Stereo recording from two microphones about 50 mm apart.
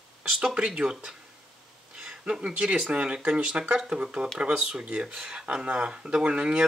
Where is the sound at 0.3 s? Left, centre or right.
Centre.